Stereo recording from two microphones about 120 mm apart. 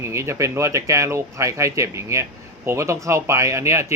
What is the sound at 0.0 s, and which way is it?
Speech, 25° right (ahead or behind).